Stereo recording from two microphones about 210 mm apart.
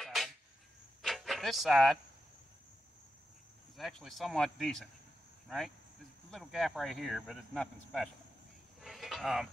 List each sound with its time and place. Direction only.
0.0 s a sound: centre (ahead or behind)
3.7 s speech: centre (ahead or behind)
6.3 s speech: centre (ahead or behind)
8.8 s insect: centre (ahead or behind)